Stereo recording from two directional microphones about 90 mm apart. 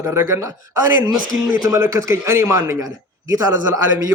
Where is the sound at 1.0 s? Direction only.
45° right (ahead or behind).